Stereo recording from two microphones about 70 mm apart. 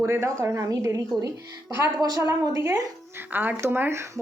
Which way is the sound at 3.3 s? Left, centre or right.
Right.